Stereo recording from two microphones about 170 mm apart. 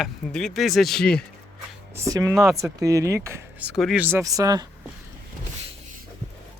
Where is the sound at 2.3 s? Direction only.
Centre (ahead or behind).